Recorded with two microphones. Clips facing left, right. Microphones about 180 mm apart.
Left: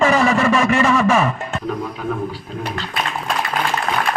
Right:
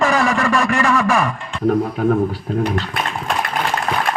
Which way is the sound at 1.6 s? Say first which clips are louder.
Right 8 dB; 50° right (ahead or behind).